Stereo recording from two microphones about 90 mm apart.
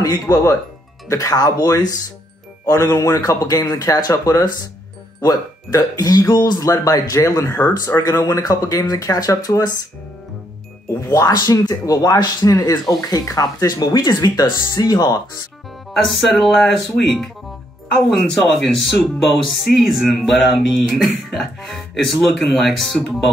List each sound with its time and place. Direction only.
0.0 s a man's voice: 35° left (ahead or behind)
11.1 s a man's voice: 45° left (ahead or behind)
15.9 s speech: centre (ahead or behind)